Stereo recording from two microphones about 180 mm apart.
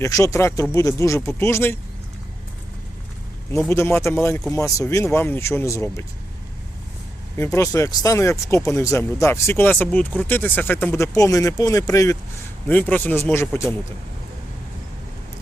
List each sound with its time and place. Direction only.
0.0 s speech: 15° left (ahead or behind)
3.7 s speech: 15° left (ahead or behind)
7.3 s speech: 15° left (ahead or behind)